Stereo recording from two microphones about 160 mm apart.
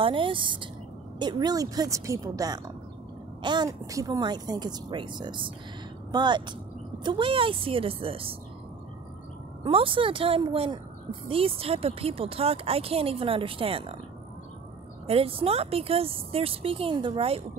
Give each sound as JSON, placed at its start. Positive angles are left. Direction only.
{"t": 0.0, "sound": "speech", "side_deg": -35}
{"t": 9.6, "sound": "speech", "side_deg": -35}
{"t": 15.0, "sound": "speech", "side_deg": -35}